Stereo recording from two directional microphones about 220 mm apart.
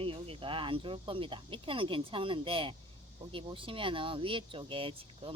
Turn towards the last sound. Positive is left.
turn(degrees=-25)  # may be behind; listen again after turning